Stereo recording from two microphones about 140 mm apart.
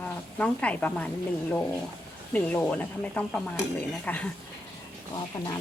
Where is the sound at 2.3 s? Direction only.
10° left (ahead or behind).